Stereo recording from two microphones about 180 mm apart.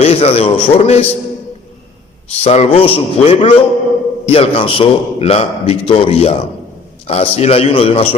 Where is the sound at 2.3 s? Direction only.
35° left (ahead or behind).